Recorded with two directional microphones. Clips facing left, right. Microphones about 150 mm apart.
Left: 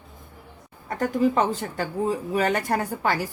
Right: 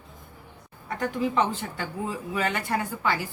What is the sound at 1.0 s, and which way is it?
Speech, 45° left (ahead or behind).